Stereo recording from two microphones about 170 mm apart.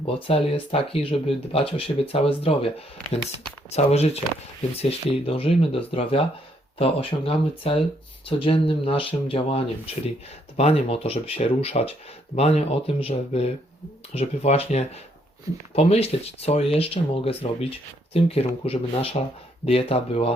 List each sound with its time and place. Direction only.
0.0 s speech: 30° left (ahead or behind)